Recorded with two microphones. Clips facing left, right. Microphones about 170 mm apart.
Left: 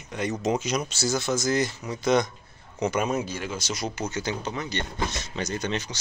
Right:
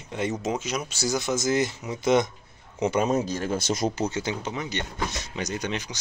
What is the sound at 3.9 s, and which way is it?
Speech, 35° right (ahead or behind).